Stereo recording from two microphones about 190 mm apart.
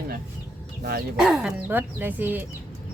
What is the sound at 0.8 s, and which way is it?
Speech, 55° right (ahead or behind).